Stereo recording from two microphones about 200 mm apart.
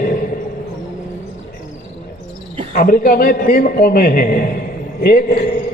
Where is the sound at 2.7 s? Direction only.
45° left (ahead or behind).